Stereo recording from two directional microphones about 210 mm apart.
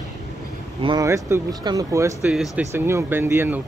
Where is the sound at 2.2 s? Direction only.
5° right (ahead or behind).